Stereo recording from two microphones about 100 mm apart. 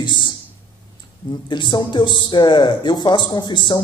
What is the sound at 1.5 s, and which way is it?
Speech, 50° left (ahead or behind).